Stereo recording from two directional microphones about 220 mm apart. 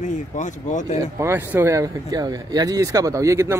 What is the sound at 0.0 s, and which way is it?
Speech, 35° left (ahead or behind).